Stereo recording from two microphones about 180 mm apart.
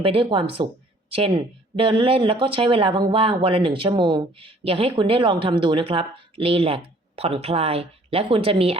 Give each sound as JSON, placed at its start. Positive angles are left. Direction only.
{"t": 0.0, "sound": "speech", "side_deg": -30}
{"t": 1.7, "sound": "speech", "side_deg": -30}